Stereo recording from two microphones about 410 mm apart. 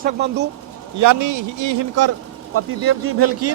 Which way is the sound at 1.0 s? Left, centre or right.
Right.